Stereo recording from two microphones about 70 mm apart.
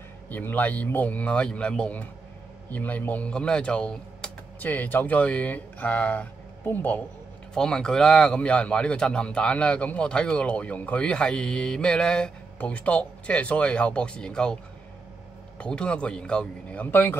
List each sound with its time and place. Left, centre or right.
0.3 s speech: left
7.5 s a man's voice: centre; by 17.2 s left